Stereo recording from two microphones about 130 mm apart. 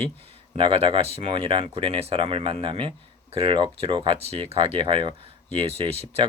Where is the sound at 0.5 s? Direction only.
40° right (ahead or behind).